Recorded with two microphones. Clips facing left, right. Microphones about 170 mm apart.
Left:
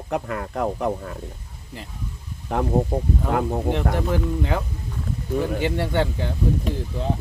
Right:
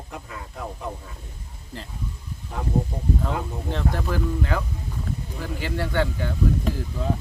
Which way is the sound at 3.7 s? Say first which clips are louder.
Even; 20° left (ahead or behind).